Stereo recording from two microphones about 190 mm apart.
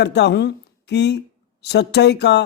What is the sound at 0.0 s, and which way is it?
Speech, 65° left (ahead or behind).